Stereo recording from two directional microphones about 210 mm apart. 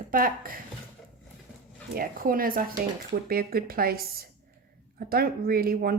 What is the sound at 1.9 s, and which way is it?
Speech, 45° right (ahead or behind).